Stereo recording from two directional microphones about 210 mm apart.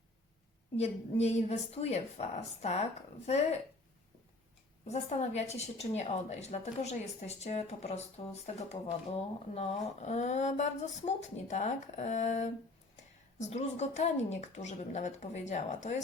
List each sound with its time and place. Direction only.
0.8 s a woman's voice: 30° left (ahead or behind)
4.9 s a woman's voice: 30° left (ahead or behind)